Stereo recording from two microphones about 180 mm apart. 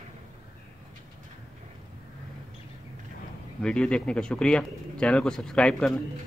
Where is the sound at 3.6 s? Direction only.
5° left (ahead or behind).